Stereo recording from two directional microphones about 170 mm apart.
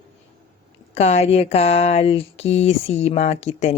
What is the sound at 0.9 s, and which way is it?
Speech, 40° left (ahead or behind).